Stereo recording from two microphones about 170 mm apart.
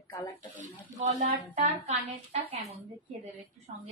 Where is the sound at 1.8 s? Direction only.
40° right (ahead or behind).